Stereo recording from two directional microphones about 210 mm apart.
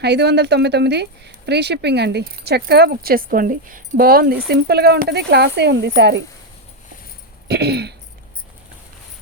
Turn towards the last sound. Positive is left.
turn(degrees=-50)  # may be behind; listen again after turning